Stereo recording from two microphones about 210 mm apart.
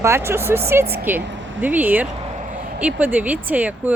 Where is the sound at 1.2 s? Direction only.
60° right (ahead or behind).